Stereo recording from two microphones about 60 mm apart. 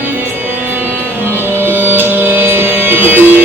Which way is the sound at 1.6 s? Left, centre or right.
Right.